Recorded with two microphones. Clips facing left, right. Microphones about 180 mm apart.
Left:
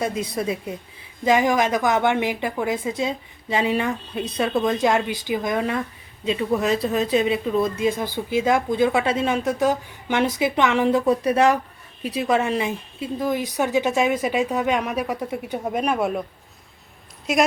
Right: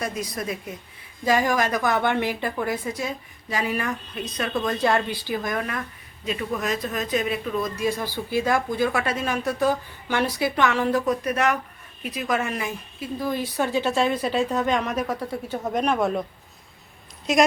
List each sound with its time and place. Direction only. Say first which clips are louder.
0.0 s a woman's voice: left 5 dB; 25° left (ahead or behind); by 16.2 s 5° left (ahead or behind)
17.3 s a woman's voice: right 1 dB; 10° left (ahead or behind)